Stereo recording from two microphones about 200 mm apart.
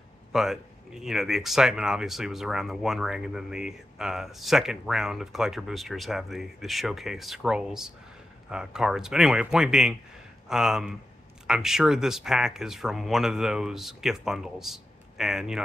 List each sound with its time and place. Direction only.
0.3 s speech: centre (ahead or behind)